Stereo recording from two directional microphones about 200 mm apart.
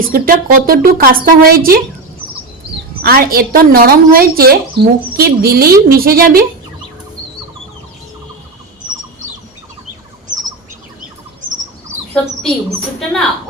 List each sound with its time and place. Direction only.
0.0 s a woman's voice: 45° right (ahead or behind)
3.0 s a woman's voice: 45° right (ahead or behind)